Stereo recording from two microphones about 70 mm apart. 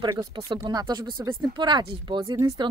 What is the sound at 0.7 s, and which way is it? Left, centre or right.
Speech, right.